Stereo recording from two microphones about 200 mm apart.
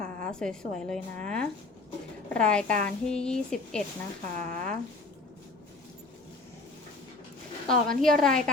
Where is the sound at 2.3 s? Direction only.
5° left (ahead or behind).